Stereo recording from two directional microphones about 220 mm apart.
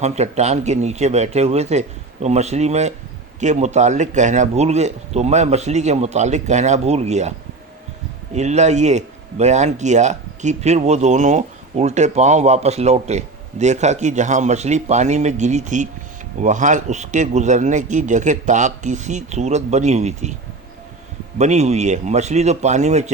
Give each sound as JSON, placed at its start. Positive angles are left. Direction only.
{"t": 0.0, "sound": "speech", "side_deg": -30}
{"t": 21.3, "sound": "speech", "side_deg": -30}